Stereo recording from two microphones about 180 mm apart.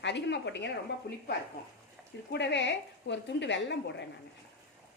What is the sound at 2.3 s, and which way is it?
A woman's voice, 75° left (ahead or behind).